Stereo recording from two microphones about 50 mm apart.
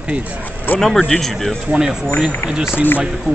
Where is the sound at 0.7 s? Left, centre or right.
Left.